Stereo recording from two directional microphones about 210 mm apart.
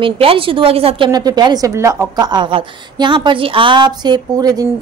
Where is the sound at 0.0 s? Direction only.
25° right (ahead or behind).